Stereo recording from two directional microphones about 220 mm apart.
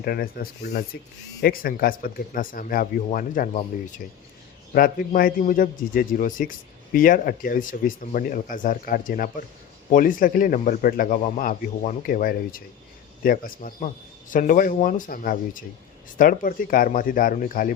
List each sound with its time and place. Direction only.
0.0 s a man's voice: 45° left (ahead or behind)